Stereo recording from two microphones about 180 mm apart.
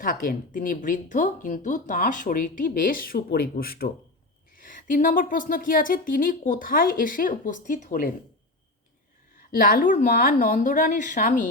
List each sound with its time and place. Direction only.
0.0 s speech: 50° left (ahead or behind)
9.4 s speech: 55° left (ahead or behind)